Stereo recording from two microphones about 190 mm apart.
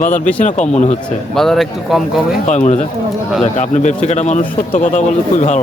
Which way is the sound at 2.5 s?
40° left (ahead or behind).